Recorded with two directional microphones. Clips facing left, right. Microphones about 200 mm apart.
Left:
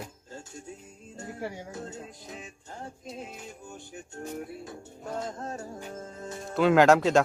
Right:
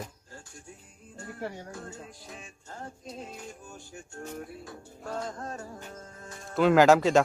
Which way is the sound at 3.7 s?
20° left (ahead or behind).